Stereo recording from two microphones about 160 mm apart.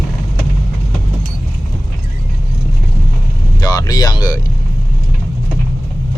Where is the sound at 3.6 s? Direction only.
25° left (ahead or behind).